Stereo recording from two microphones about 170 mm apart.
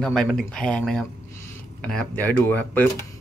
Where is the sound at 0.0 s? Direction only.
5° left (ahead or behind).